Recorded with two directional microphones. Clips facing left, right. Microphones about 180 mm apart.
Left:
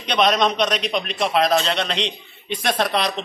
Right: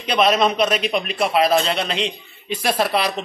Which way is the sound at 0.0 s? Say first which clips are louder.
Right 1 dB; 5° right (ahead or behind).